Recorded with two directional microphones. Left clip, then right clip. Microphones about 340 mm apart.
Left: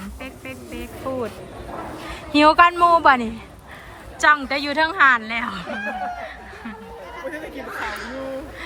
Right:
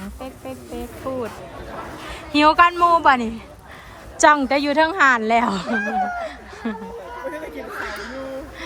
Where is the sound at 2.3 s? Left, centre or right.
Centre.